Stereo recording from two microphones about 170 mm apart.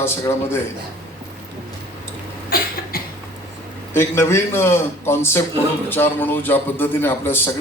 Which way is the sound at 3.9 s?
15° left (ahead or behind).